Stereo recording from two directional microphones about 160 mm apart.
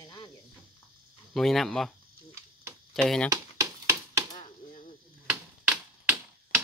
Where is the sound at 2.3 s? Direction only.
15° right (ahead or behind).